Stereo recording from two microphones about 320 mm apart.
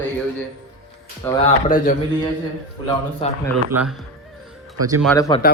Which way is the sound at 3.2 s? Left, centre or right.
Centre.